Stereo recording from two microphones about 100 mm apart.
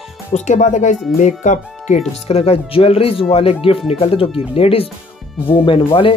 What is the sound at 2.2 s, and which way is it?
Speech, 90° left.